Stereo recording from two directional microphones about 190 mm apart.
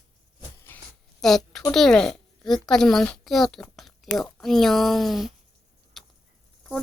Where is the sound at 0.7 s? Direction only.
10° left (ahead or behind).